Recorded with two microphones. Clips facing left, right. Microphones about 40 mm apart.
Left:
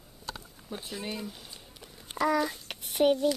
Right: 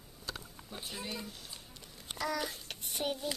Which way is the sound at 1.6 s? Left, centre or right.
Centre.